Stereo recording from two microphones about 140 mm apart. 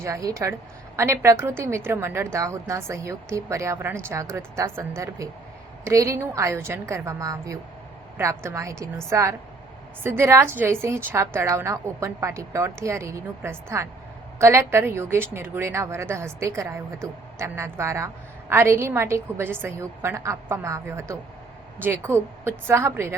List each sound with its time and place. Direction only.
0.0 s a woman's voice: 20° right (ahead or behind)